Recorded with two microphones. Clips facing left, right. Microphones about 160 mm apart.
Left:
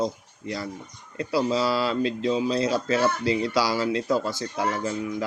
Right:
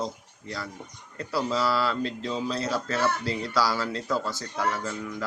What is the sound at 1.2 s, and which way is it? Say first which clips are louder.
Speech: left 4 dB; 15° left (ahead or behind).